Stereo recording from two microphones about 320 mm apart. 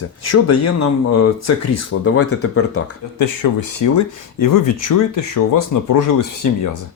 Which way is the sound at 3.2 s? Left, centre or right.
Left.